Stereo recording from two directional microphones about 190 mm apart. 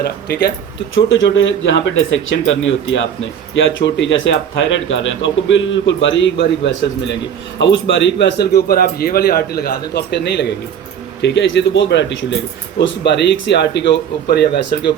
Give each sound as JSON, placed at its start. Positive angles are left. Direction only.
{"t": 0.0, "sound": "a man's voice", "side_deg": 55}
{"t": 0.9, "sound": "a man's voice", "side_deg": 80}